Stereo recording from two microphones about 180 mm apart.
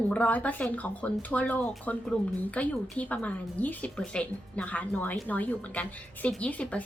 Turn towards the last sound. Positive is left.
turn(degrees=5)  # may be behind; listen again after turning